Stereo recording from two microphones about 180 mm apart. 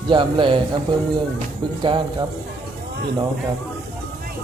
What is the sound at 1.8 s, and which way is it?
Speech, 25° right (ahead or behind).